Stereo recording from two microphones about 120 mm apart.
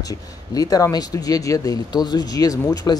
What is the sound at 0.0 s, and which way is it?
Speech, 30° left (ahead or behind).